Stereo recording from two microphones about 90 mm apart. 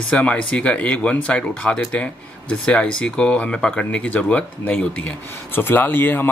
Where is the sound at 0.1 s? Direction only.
15° left (ahead or behind).